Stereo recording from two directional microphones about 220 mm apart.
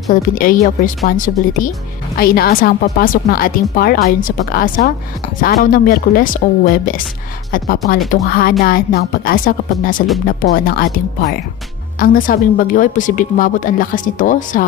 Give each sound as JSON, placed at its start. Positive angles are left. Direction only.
{"t": 0.1, "sound": "a woman's voice", "side_deg": 40}